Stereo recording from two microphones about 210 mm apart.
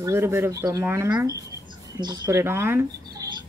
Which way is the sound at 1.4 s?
15° right (ahead or behind).